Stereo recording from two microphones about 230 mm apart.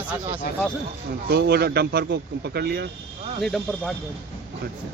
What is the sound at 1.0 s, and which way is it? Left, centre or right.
Speech, right.